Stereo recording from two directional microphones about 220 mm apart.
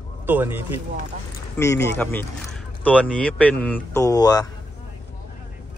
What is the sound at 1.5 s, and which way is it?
Speech, 10° left (ahead or behind).